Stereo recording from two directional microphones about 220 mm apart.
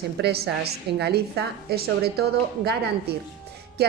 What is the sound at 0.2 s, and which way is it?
A woman's voice, 50° right (ahead or behind).